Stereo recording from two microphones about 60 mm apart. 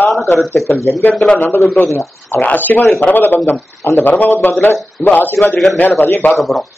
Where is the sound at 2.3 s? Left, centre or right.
Left.